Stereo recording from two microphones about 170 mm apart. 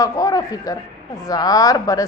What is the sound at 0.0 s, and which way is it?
A woman's voice, 20° left (ahead or behind).